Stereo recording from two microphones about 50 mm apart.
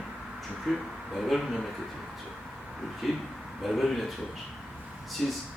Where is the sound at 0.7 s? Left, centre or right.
Centre.